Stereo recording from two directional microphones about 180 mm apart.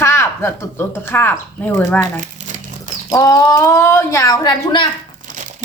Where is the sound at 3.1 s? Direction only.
20° left (ahead or behind).